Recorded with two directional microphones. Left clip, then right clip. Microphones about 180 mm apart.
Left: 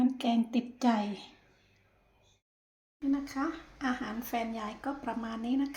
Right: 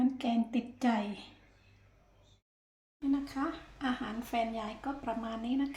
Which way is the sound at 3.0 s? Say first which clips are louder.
Left 1 dB; 15° left (ahead or behind).